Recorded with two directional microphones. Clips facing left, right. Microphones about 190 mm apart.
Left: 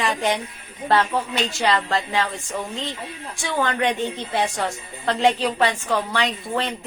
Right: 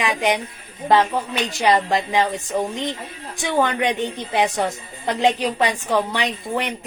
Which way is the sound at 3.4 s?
20° right (ahead or behind).